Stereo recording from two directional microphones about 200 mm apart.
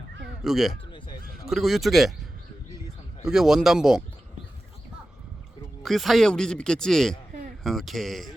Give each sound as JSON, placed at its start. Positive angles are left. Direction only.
{"t": 0.4, "sound": "speech", "side_deg": 0}
{"t": 0.9, "sound": "a sound", "side_deg": 25}
{"t": 1.5, "sound": "speech", "side_deg": 0}
{"t": 3.2, "sound": "speech", "side_deg": 0}
{"t": 5.8, "sound": "speech", "side_deg": 0}